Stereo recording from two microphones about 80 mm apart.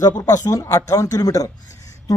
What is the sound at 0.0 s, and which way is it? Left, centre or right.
Speech, left.